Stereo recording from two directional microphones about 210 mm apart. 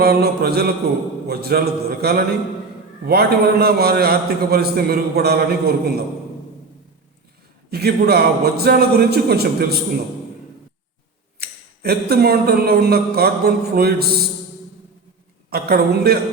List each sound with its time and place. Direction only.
0.0 s a man's voice: 50° right (ahead or behind)
7.7 s a man's voice: 50° right (ahead or behind)
11.3 s a man's voice: 50° right (ahead or behind)
15.4 s a man's voice: 50° right (ahead or behind)